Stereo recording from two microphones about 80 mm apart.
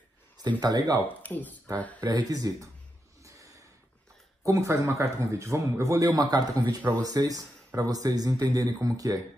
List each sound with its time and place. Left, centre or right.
0.4 s speech: right
1.2 s speech: left
2.0 s speech: right
3.3 s a sound: right
4.5 s speech: right